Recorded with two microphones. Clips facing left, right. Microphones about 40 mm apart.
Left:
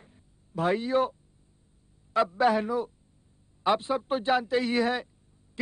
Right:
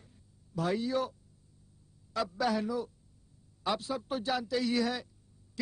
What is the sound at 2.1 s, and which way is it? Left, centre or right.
A man's voice, left.